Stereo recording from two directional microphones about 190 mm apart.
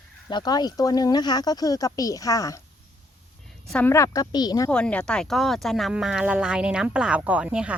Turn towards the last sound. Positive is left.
turn(degrees=-5)  # may be behind; listen again after turning